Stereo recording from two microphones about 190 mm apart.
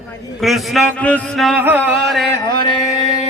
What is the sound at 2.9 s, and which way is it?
Music, 35° right (ahead or behind).